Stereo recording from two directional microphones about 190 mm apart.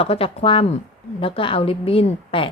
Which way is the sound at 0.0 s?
30° left (ahead or behind).